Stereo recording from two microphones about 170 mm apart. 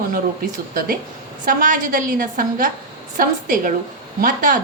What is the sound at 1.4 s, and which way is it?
A woman's voice, 50° right (ahead or behind).